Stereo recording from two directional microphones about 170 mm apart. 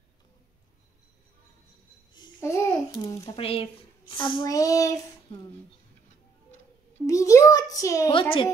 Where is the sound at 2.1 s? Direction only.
25° left (ahead or behind).